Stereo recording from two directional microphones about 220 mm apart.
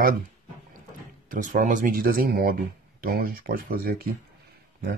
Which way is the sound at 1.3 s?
35° right (ahead or behind).